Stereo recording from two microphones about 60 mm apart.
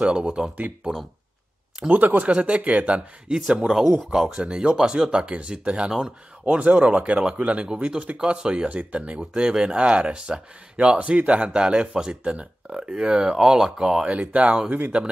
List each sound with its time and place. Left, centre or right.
0.0 s speech: centre
1.8 s speech: right
3.3 s speech: centre
6.4 s speech: right